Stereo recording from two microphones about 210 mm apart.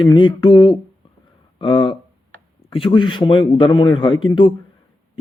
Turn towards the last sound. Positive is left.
turn(degrees=25)  # may be behind; listen again after turning